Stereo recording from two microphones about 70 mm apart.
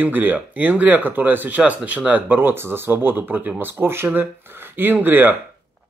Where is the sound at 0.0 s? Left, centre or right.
Right.